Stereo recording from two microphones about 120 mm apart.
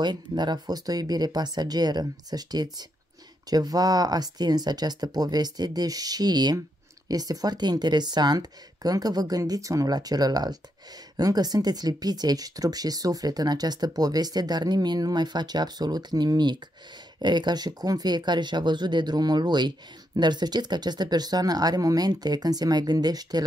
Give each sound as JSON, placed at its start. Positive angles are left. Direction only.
{"t": 0.0, "sound": "speech", "side_deg": -35}